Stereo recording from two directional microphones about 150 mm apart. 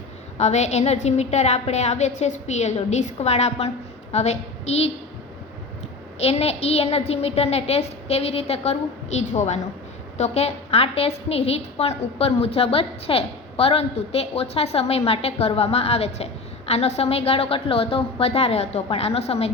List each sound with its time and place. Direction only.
0.3 s a woman's voice: 50° left (ahead or behind)
6.1 s a woman's voice: 45° left (ahead or behind)